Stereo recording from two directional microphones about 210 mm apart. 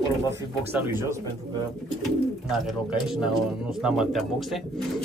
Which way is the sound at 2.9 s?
5° right (ahead or behind).